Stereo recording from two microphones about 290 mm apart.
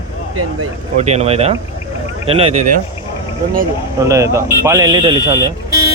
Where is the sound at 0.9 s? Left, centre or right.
Right.